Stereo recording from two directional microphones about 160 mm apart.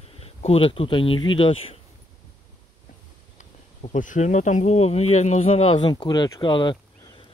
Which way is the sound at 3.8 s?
50° left (ahead or behind).